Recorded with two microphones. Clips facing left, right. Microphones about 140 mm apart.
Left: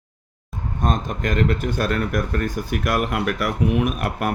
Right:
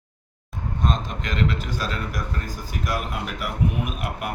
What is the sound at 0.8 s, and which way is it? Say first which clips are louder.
Speech: left 4 dB; 50° left (ahead or behind).